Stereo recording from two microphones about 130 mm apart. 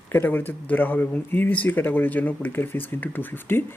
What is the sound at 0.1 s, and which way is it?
Speech, 15° left (ahead or behind).